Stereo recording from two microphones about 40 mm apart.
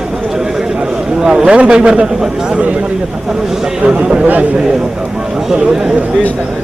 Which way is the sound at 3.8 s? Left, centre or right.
Right.